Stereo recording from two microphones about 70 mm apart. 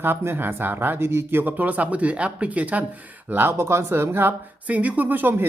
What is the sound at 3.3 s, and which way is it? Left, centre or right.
Speech, right.